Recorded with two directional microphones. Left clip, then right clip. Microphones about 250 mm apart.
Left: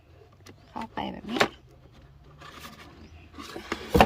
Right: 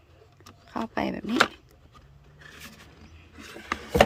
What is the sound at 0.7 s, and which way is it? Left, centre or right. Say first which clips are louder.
Speech: right 5 dB; centre.